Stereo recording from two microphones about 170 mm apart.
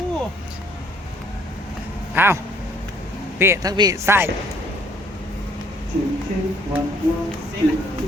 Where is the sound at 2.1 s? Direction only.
15° right (ahead or behind).